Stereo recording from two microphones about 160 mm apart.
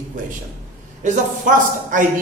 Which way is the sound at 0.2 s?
55° right (ahead or behind).